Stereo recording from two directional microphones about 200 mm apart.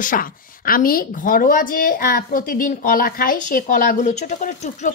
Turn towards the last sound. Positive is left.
turn(degrees=40)  # may be behind; listen again after turning